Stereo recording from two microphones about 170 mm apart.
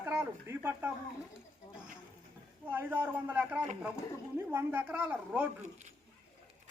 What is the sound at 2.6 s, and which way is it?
A man's voice, 10° right (ahead or behind).